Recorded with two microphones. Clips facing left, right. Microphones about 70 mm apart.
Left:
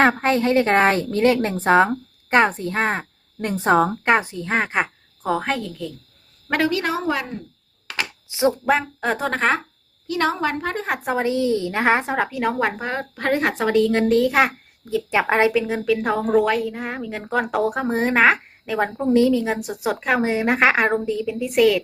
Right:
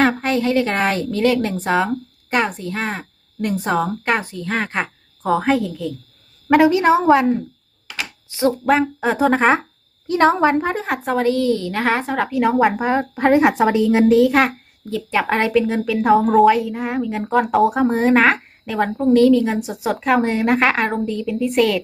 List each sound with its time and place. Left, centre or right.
0.0 s a woman's voice: left
5.2 s a woman's voice: centre
6.5 s a woman's voice: centre
8.3 s speech: centre
8.6 s a woman's voice: centre
10.1 s a woman's voice: right
10.8 s a woman's voice: centre
11.2 s a woman's voice: centre
12.1 s a woman's voice: centre
12.4 s a woman's voice: centre
14.0 s a child's voice: centre